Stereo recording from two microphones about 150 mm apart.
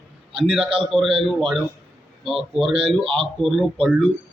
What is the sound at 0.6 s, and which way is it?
Speech, 35° right (ahead or behind).